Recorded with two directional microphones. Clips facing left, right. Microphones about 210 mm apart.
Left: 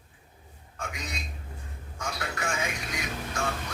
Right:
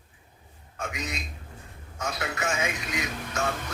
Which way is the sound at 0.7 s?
20° right (ahead or behind).